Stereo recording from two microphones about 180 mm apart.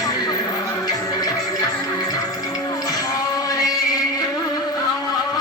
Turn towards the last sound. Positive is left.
turn(degrees=20)  # may be behind; listen again after turning